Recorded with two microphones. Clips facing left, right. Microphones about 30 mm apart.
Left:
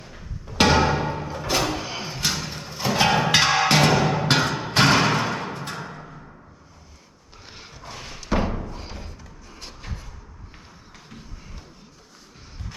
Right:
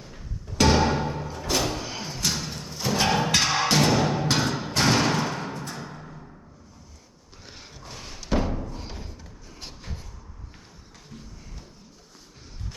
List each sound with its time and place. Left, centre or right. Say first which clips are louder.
0.0 s music: left 1 dB; left
3.2 s music: left 4 dB; left
4.4 s music: left 2 dB; left
4.7 s music: left 4 dB; left
7.4 s a sound: left 2 dB; centre
8.3 s thump: left 2 dB; centre
9.0 s a sound: left 1 dB; centre
11.1 s music: even; left